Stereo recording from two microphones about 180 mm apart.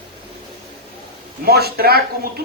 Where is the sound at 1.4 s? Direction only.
60° right (ahead or behind).